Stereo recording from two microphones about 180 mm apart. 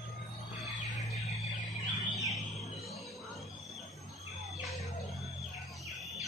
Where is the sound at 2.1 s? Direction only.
20° left (ahead or behind).